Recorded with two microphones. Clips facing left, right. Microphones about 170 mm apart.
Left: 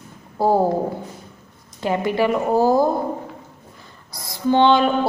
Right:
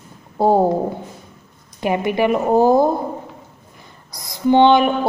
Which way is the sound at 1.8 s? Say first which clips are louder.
Right 2 dB; 15° right (ahead or behind).